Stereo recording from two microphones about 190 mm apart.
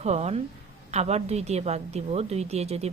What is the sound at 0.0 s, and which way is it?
A woman's voice, 35° right (ahead or behind).